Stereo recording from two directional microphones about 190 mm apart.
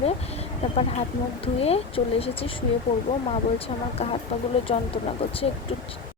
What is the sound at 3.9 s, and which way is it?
Speech, 35° left (ahead or behind).